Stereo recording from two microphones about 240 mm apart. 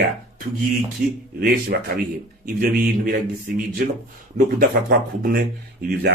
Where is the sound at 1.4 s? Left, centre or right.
Right.